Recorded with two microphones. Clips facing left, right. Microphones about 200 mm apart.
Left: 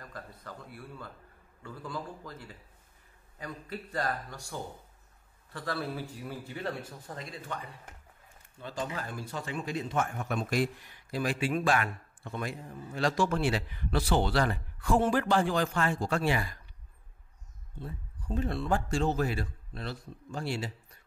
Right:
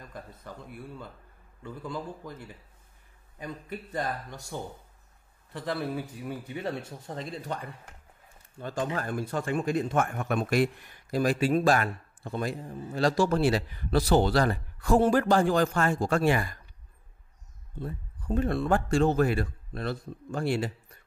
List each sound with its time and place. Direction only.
0.0 s a man's voice: 20° right (ahead or behind)
8.5 s a man's voice: 50° right (ahead or behind)
11.1 s a man's voice: 45° right (ahead or behind)
17.7 s a man's voice: 55° right (ahead or behind)